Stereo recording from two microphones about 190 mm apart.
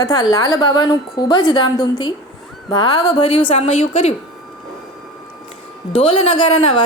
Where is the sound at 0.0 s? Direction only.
20° left (ahead or behind); by 4.1 s 35° left (ahead or behind).